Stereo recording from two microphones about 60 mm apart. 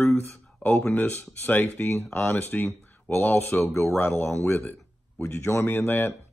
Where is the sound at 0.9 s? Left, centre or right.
Left.